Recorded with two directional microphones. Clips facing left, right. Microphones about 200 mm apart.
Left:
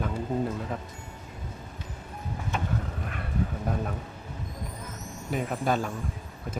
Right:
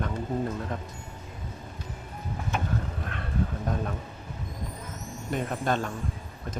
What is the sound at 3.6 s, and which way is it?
Speech, 5° left (ahead or behind).